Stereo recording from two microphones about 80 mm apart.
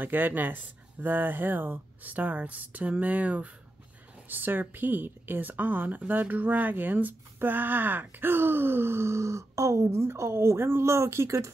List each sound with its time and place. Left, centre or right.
0.0 s speech: right